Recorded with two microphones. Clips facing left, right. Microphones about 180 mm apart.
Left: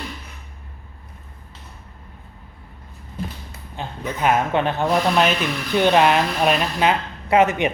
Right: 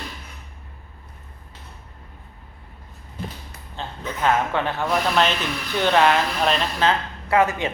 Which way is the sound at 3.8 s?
15° left (ahead or behind).